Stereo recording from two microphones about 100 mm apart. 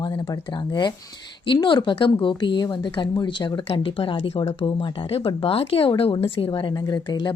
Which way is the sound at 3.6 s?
60° left (ahead or behind).